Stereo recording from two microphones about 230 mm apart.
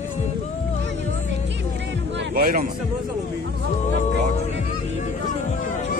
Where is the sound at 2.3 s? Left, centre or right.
Right.